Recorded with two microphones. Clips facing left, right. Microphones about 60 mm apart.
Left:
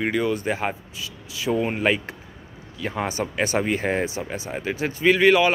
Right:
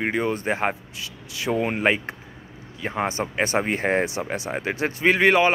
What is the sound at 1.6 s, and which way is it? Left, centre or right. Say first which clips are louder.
Speech: even; right.